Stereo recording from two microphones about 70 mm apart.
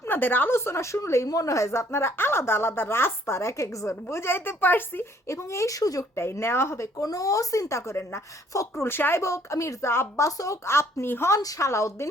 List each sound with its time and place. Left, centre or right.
0.1 s speech: left
5.3 s speech: left
6.1 s speech: left
6.9 s speech: left
9.2 s speech: left
10.7 s speech: left
11.3 s speech: left